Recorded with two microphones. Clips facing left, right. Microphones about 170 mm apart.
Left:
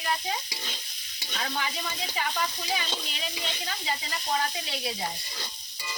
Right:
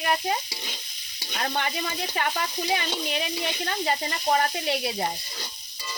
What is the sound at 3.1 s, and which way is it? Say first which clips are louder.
Speech: right 7 dB; 60° right (ahead or behind).